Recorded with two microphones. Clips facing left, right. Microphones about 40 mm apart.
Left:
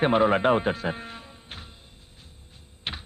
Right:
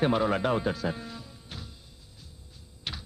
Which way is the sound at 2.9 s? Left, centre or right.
Left.